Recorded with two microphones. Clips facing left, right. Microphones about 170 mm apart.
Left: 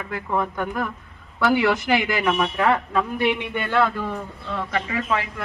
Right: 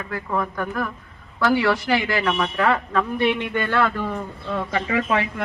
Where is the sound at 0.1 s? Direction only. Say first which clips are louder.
Left 1 dB; 15° left (ahead or behind).